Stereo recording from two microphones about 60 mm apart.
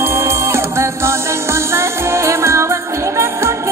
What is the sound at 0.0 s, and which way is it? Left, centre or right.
Music, right.